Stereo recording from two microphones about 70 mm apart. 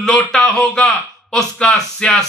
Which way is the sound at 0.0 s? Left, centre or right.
Centre.